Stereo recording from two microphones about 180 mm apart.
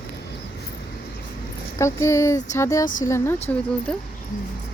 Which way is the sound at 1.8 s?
15° left (ahead or behind).